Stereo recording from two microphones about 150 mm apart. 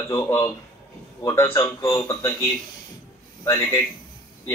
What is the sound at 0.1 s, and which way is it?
A man's voice, 20° left (ahead or behind).